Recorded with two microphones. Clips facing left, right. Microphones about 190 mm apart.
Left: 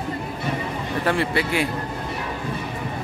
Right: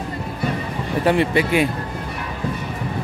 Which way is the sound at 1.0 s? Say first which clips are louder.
Right 5 dB; 15° right (ahead or behind).